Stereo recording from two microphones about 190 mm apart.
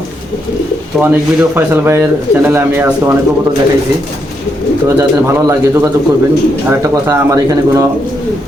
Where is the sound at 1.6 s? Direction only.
10° right (ahead or behind).